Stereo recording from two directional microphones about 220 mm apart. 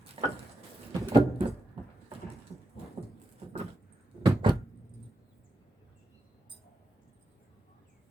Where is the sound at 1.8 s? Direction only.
20° right (ahead or behind).